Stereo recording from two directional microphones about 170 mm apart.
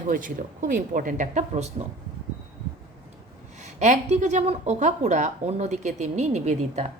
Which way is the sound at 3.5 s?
45° right (ahead or behind).